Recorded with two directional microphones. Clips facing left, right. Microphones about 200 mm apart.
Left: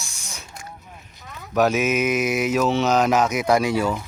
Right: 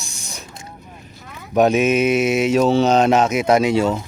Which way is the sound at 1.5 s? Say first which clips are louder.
Right 4 dB; 30° right (ahead or behind).